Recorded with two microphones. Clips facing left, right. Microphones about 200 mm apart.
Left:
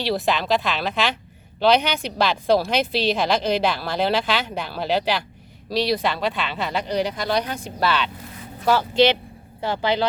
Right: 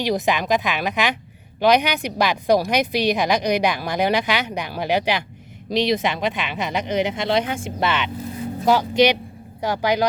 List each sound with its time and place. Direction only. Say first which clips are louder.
0.0 s speech: right 2 dB; 15° right (ahead or behind)